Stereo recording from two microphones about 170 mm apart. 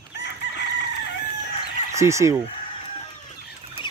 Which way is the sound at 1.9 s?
15° right (ahead or behind).